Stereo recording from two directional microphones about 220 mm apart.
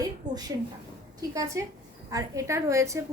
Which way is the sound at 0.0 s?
15° right (ahead or behind).